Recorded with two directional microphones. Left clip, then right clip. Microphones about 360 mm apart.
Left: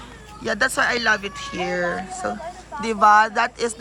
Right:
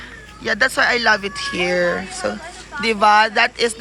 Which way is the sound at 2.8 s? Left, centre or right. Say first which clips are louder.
Right 1 dB; centre.